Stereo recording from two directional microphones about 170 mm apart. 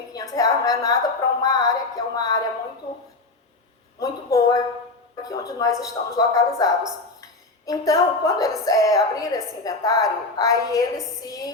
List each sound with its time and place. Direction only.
0.1 s speech: 20° left (ahead or behind)
4.0 s speech: 20° left (ahead or behind)